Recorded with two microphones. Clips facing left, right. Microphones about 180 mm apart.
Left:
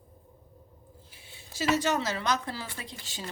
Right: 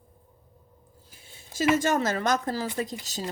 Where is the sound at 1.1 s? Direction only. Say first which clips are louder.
Even; 45° right (ahead or behind).